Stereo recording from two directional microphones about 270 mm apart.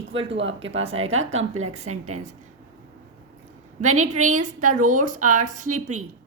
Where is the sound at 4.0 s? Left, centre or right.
Right.